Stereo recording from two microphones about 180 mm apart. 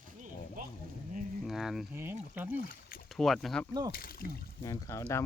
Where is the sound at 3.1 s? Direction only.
Centre (ahead or behind).